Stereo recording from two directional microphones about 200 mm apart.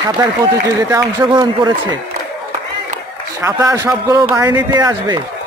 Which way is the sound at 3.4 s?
15° right (ahead or behind).